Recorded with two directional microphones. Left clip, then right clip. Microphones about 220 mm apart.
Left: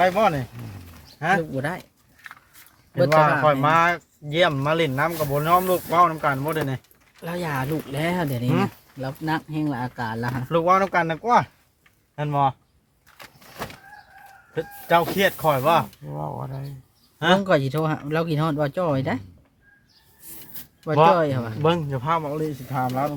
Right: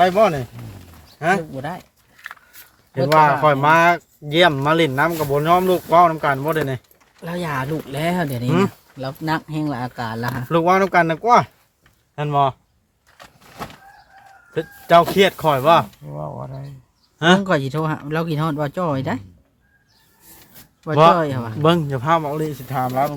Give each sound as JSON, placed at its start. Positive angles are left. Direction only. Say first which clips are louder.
{"t": 0.0, "sound": "speech", "louder": "right 4 dB", "side_deg": -35}
{"t": 1.5, "sound": "speech", "louder": "left 1 dB", "side_deg": 35}
{"t": 3.1, "sound": "speech", "louder": "right 5 dB", "side_deg": -40}
{"t": 7.2, "sound": "speech", "louder": "right 3 dB", "side_deg": 0}
{"t": 8.4, "sound": "speech", "louder": "right 6 dB", "side_deg": -40}
{"t": 9.0, "sound": "speech", "louder": "right 3 dB", "side_deg": -5}
{"t": 10.5, "sound": "speech", "louder": "right 3 dB", "side_deg": -40}
{"t": 14.5, "sound": "speech", "louder": "right 6 dB", "side_deg": -45}
{"t": 16.0, "sound": "speech", "louder": "right 1 dB", "side_deg": 5}
{"t": 20.9, "sound": "speech", "louder": "right 4 dB", "side_deg": -35}
{"t": 21.2, "sound": "speech", "louder": "right 1 dB", "side_deg": 0}
{"t": 21.6, "sound": "speech", "louder": "right 5 dB", "side_deg": -35}